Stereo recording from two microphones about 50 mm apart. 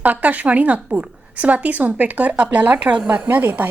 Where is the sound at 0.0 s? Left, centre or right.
Right.